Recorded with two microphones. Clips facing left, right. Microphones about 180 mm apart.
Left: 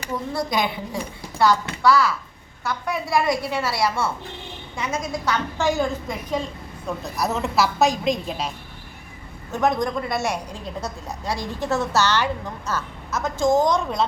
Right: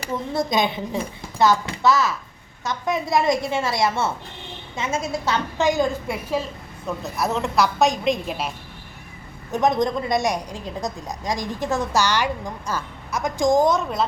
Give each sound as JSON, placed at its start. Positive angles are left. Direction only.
{"t": 0.3, "sound": "a woman's voice", "side_deg": -20}
{"t": 9.5, "sound": "a woman's voice", "side_deg": -20}